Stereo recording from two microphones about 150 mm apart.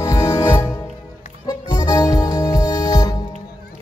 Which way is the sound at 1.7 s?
25° left (ahead or behind).